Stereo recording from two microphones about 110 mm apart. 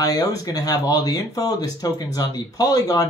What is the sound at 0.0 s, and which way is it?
Speech, 35° left (ahead or behind).